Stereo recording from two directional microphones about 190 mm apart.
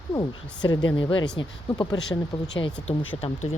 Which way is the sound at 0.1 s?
20° left (ahead or behind).